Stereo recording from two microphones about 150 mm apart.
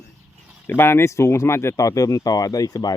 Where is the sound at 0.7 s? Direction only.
15° left (ahead or behind).